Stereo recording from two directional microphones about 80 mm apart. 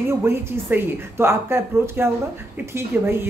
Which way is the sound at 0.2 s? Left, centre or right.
Right.